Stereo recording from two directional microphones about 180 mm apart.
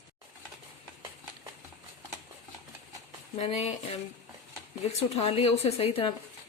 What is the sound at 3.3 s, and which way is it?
Speech, 35° left (ahead or behind).